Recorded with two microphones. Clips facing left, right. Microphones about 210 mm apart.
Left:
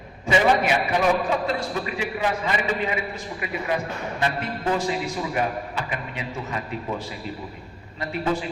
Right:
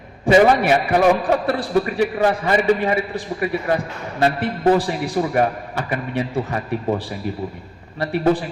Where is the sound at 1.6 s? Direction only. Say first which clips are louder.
Right 9 dB; 40° right (ahead or behind).